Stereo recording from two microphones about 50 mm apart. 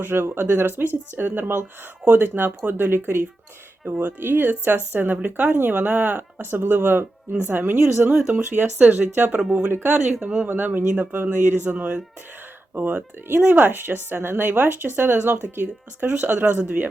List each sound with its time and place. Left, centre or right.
0.0 s speech: right
9.4 s speech: centre
9.8 s speech: right
10.5 s speech: right